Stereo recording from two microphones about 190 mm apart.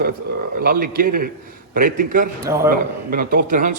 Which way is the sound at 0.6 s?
50° right (ahead or behind).